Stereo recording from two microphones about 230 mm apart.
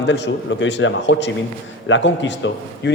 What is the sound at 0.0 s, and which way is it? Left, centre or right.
Speech, left.